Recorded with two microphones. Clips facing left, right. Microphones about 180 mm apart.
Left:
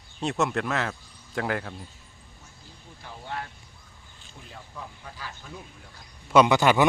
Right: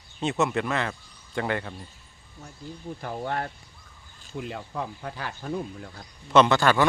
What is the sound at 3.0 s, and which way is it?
Speech, 55° right (ahead or behind).